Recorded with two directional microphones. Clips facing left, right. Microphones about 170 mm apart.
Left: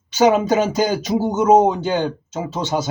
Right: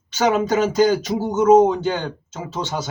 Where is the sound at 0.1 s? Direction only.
10° left (ahead or behind).